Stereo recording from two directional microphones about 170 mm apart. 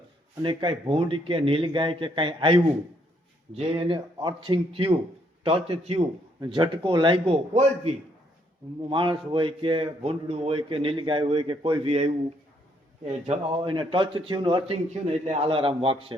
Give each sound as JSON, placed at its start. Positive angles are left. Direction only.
{"t": 0.4, "sound": "speech", "side_deg": -30}